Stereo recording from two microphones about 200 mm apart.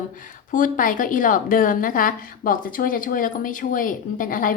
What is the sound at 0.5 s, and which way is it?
A woman's voice, 40° left (ahead or behind).